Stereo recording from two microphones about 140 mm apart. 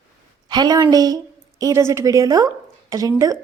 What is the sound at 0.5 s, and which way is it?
A woman's voice, 30° right (ahead or behind).